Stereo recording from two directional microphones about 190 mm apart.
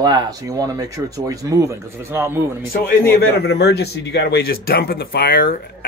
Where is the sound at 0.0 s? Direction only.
20° right (ahead or behind).